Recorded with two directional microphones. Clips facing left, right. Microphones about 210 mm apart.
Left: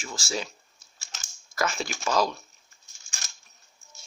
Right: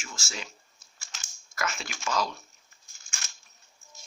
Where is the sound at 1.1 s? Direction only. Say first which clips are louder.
Left 7 dB; 40° left (ahead or behind).